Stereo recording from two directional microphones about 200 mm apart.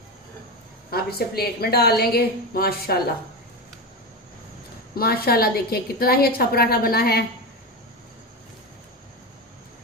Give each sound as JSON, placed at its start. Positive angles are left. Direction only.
{"t": 0.9, "sound": "a woman's voice", "side_deg": 50}
{"t": 4.9, "sound": "a woman's voice", "side_deg": 50}